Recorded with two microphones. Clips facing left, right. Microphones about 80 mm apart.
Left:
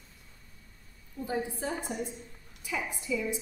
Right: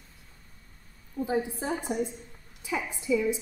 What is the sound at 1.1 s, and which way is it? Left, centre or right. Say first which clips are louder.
A woman's voice: right 4 dB; right.